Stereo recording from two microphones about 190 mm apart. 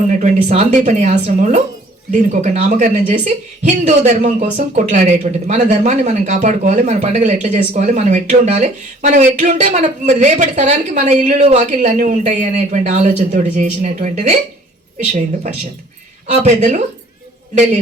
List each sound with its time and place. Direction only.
0.1 s speech: 40° right (ahead or behind)